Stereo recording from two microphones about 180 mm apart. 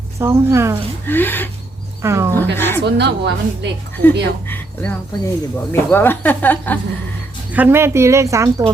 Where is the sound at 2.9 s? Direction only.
70° right (ahead or behind).